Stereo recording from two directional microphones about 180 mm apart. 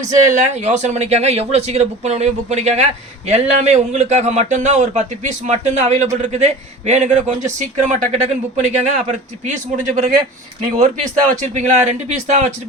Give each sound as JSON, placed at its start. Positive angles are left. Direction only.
{"t": 0.3, "sound": "speech", "side_deg": -40}